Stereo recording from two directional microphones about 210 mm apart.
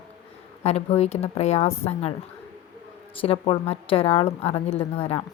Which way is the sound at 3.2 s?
30° left (ahead or behind).